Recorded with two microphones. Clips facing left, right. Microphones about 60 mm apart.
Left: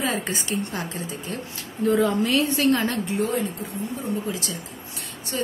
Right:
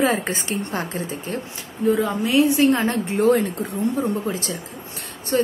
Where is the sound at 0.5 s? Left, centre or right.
Right.